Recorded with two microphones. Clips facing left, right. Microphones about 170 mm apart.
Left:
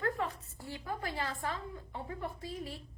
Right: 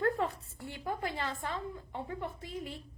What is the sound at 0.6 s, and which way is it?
Speech, 25° right (ahead or behind).